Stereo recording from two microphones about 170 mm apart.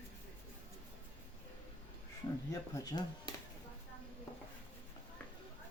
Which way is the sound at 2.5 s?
20° left (ahead or behind).